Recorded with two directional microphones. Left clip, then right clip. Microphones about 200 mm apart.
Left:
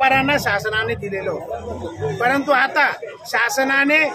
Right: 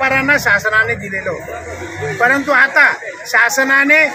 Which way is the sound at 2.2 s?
15° left (ahead or behind).